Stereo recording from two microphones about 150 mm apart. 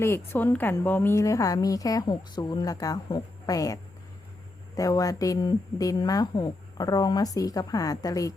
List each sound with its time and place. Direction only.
0.0 s a woman's voice: 15° left (ahead or behind)
4.8 s a woman's voice: 25° left (ahead or behind)